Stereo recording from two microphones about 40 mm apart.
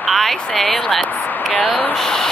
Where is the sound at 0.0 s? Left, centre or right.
Centre.